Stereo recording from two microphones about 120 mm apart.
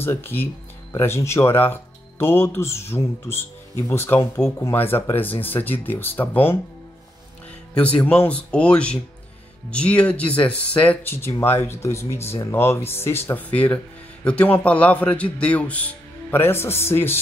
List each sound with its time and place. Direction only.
0.0 s a man's voice: 20° left (ahead or behind)
7.7 s a man's voice: 10° left (ahead or behind)